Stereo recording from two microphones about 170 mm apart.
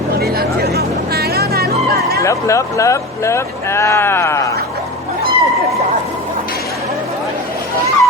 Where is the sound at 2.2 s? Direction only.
20° left (ahead or behind).